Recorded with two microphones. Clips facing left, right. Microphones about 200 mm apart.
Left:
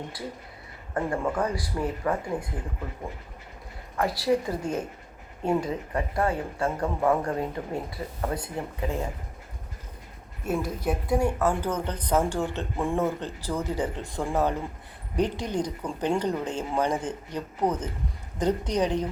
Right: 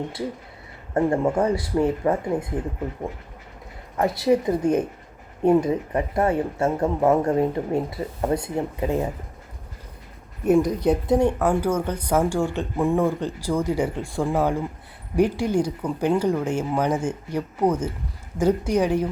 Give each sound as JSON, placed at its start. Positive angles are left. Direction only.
{"t": 0.9, "sound": "speech", "side_deg": -25}
{"t": 3.9, "sound": "speech", "side_deg": -20}
{"t": 10.4, "sound": "speech", "side_deg": -15}